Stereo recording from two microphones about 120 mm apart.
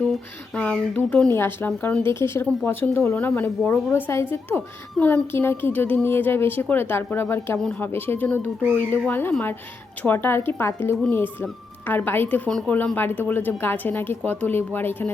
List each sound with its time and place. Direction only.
0.1 s a woman's voice: 10° left (ahead or behind)
1.3 s a woman's voice: 20° left (ahead or behind)